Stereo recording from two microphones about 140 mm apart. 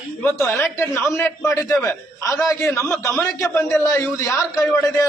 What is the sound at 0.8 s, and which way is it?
A man's voice, 15° left (ahead or behind).